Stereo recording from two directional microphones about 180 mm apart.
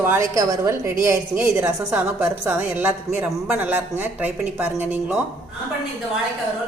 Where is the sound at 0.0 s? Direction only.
15° right (ahead or behind).